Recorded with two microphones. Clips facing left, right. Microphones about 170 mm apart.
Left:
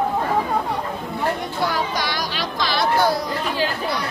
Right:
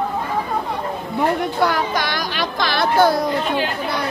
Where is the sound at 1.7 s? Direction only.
55° right (ahead or behind).